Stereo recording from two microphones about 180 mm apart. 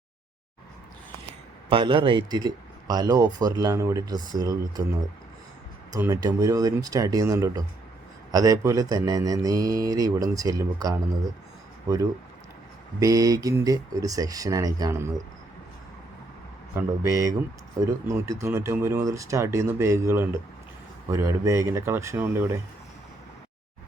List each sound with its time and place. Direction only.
1.7 s speech: 30° right (ahead or behind)
6.0 s speech: 20° right (ahead or behind)
13.0 s speech: 20° right (ahead or behind)
16.7 s speech: 15° right (ahead or behind)